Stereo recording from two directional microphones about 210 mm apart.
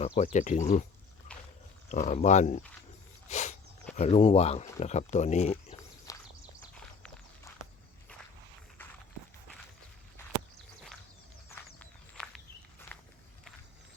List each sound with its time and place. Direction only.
0.2 s speech: 35° left (ahead or behind)
1.3 s pig: 5° left (ahead or behind)
1.9 s speech: 35° left (ahead or behind)
3.2 s dog: 35° left (ahead or behind)
3.9 s speech: 30° left (ahead or behind)
6.1 s horse: 15° left (ahead or behind)
6.7 s walk: 5° left (ahead or behind)
11.4 s walk: 10° left (ahead or behind)